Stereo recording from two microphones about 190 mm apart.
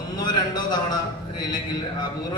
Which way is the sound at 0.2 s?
20° left (ahead or behind).